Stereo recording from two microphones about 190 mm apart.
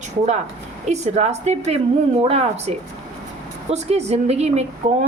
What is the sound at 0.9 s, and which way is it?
A woman's voice, 35° right (ahead or behind).